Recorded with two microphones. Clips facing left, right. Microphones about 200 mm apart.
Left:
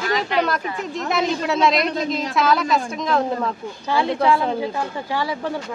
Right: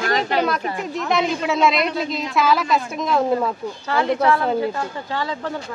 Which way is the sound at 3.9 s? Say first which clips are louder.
Even; 15° left (ahead or behind).